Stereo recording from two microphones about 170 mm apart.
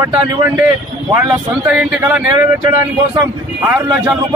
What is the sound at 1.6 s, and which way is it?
Speech, 5° right (ahead or behind).